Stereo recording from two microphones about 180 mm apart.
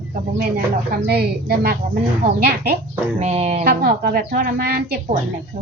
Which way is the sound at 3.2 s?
35° right (ahead or behind).